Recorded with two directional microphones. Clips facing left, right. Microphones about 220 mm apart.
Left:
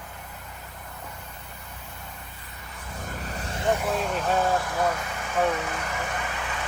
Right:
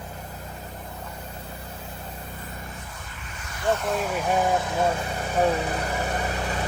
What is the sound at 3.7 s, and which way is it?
Speech, 5° left (ahead or behind).